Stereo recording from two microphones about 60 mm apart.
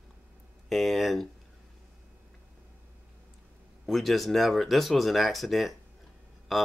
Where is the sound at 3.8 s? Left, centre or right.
Centre.